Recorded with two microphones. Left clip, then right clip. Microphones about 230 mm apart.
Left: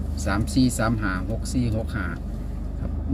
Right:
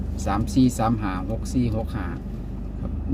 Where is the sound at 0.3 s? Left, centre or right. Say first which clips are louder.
Right 1 dB; left.